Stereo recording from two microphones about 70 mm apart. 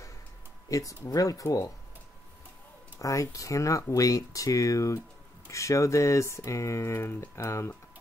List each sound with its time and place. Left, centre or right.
0.7 s speech: left
3.0 s speech: left